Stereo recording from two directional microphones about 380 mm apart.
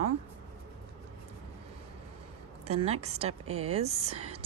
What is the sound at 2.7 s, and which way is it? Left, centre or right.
Speech, centre.